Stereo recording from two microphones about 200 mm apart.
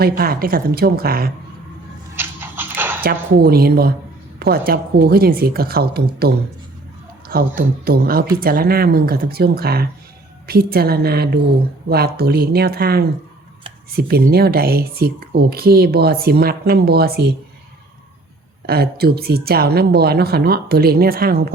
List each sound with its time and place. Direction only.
0.2 s speech: 50° right (ahead or behind)
2.1 s dog: 10° right (ahead or behind)
3.3 s speech: 50° right (ahead or behind)
18.6 s speech: 50° right (ahead or behind)